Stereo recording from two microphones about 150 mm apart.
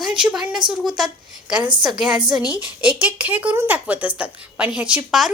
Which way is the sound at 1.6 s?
30° right (ahead or behind).